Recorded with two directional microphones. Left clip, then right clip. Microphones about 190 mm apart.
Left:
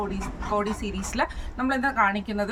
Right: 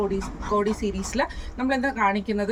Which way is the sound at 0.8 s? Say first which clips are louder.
Right 2 dB; 20° left (ahead or behind).